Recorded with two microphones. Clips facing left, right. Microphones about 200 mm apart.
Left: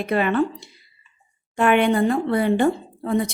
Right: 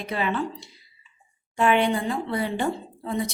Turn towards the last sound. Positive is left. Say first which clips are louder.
# left 6 dB
turn(degrees=55)  # may be behind; listen again after turning